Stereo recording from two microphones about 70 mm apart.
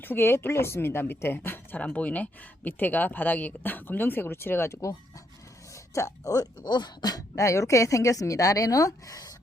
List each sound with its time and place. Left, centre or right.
0.0 s speech: left
1.8 s speech: left